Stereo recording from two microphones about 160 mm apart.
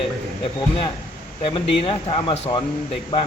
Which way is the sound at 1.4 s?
35° left (ahead or behind).